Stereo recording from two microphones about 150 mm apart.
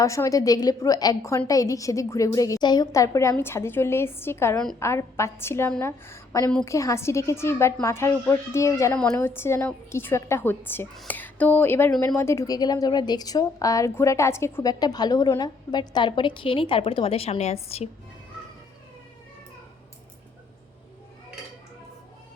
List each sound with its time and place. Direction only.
0.0 s a woman's voice: 20° left (ahead or behind); by 17.8 s 45° left (ahead or behind)